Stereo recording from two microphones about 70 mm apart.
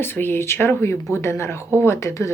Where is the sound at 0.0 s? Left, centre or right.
Left.